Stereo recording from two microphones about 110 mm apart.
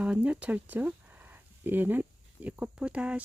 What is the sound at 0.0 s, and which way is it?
Speech, 10° right (ahead or behind).